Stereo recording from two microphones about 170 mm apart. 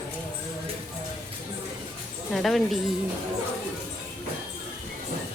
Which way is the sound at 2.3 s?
Centre (ahead or behind).